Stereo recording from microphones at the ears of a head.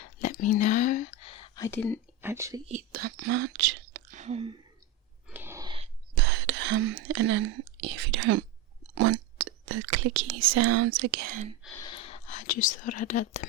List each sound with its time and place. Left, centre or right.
0.0 s whispering: left
2.6 s speech: right
5.8 s speech: right
11.6 s speech: left